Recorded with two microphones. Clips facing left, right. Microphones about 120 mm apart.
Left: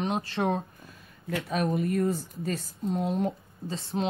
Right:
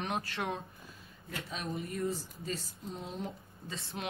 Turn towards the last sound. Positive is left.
turn(degrees=35)  # may be behind; listen again after turning